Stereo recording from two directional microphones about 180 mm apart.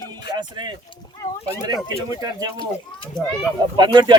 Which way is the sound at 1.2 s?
15° left (ahead or behind).